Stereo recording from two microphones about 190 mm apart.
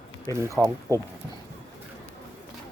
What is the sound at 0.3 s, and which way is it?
Speech, 15° right (ahead or behind).